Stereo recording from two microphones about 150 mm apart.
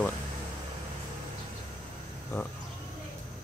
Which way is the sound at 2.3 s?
20° left (ahead or behind).